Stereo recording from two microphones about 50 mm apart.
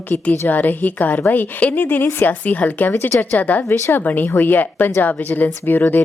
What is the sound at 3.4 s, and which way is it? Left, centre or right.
Speech, left.